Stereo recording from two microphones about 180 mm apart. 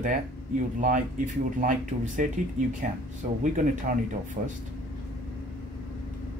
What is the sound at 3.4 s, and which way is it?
Speech, 45° right (ahead or behind).